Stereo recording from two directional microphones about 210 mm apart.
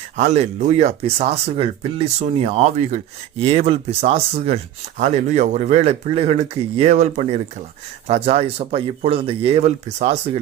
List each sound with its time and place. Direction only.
0.2 s speech: 35° right (ahead or behind)